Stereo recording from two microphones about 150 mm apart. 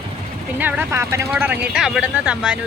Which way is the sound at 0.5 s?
10° right (ahead or behind).